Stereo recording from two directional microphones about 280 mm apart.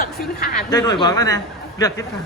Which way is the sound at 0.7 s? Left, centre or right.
Centre.